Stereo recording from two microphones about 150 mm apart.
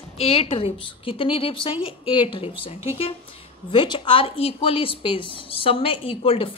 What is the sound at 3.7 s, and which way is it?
Speech, 30° left (ahead or behind).